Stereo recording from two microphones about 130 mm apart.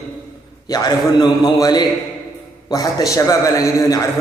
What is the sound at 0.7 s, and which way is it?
A man's voice, 35° left (ahead or behind).